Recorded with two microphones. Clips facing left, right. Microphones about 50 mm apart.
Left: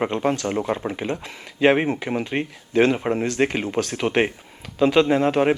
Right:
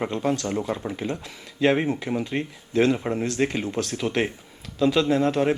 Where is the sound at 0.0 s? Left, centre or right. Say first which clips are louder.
Left 3 dB; left.